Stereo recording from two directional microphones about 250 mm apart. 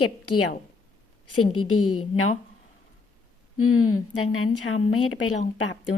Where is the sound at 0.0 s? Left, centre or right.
Left.